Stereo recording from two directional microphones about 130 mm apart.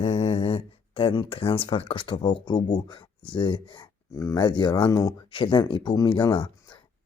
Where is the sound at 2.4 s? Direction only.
35° left (ahead or behind).